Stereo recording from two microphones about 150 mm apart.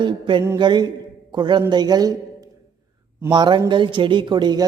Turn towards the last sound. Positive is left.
turn(degrees=-30)  # may be behind; listen again after turning